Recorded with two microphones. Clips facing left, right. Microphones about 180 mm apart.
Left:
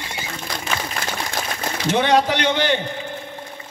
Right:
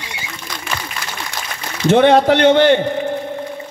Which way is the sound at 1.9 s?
55° right (ahead or behind).